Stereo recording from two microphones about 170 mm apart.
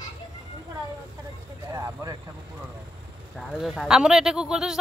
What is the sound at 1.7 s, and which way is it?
Speech, 20° right (ahead or behind).